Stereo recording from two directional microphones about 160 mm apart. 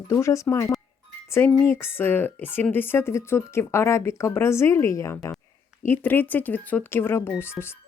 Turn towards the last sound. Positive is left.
turn(degrees=15)  # may be behind; listen again after turning